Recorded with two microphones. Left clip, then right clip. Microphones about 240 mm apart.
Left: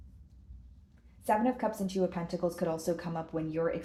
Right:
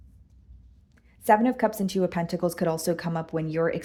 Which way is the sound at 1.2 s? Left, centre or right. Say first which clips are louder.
Right 8 dB; right.